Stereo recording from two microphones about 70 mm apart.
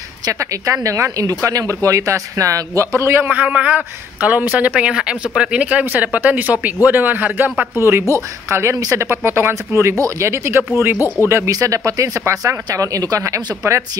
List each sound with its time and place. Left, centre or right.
0.3 s speech: right
3.3 s speech: centre
8.1 s speech: right
11.5 s speech: right